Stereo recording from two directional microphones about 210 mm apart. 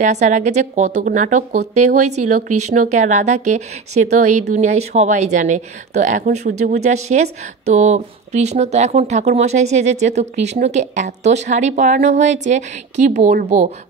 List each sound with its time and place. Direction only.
0.0 s speech: 35° right (ahead or behind)